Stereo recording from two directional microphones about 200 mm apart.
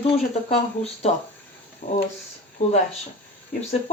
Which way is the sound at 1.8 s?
30° left (ahead or behind).